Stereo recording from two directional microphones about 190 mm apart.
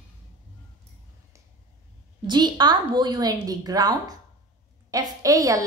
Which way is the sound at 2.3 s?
25° right (ahead or behind).